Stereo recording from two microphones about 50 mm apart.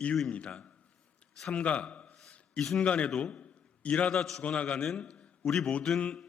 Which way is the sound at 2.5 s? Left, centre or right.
Centre.